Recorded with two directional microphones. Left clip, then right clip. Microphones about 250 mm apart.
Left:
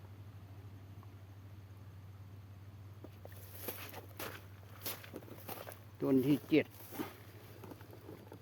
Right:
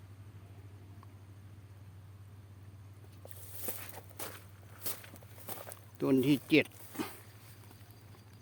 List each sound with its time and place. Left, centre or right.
3.7 s walk: centre
6.0 s speech: right